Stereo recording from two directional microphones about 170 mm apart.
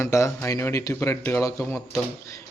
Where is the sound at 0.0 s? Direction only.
15° left (ahead or behind).